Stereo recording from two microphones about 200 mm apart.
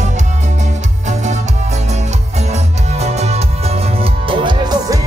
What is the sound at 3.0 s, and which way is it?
Music, 30° right (ahead or behind).